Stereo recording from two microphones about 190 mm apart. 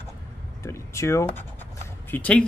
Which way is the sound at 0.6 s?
15° left (ahead or behind).